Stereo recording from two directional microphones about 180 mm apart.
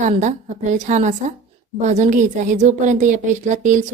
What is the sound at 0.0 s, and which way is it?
A woman's voice, 40° right (ahead or behind).